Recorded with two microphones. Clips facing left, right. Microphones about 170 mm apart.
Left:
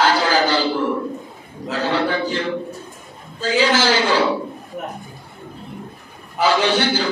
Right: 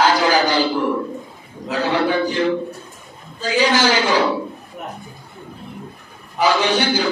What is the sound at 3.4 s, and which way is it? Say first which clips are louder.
Speech: even; 15° right (ahead or behind).